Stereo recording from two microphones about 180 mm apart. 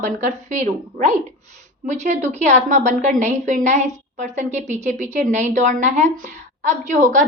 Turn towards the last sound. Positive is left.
turn(degrees=-45)  # may be behind; listen again after turning